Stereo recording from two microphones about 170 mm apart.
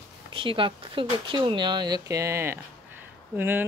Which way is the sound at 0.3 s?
30° right (ahead or behind).